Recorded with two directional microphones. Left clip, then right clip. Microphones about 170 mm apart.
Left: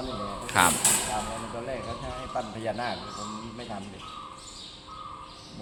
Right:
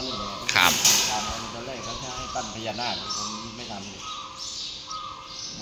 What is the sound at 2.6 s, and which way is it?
Speech, 5° left (ahead or behind).